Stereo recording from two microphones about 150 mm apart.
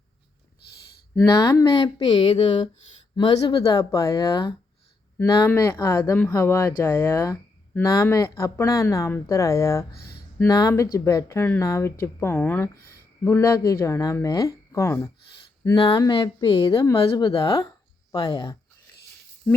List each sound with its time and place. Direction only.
1.3 s speech: 25° left (ahead or behind)
9.9 s speech: 90° left
10.4 s speech: 25° left (ahead or behind)
19.5 s speech: 5° left (ahead or behind)